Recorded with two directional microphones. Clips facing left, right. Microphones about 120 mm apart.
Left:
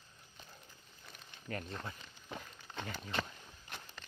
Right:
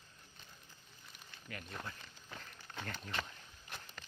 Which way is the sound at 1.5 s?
40° left (ahead or behind).